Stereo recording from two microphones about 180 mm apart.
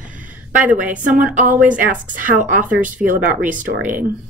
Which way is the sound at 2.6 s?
10° right (ahead or behind).